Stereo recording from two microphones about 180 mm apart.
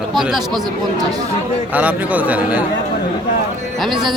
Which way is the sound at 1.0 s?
20° right (ahead or behind).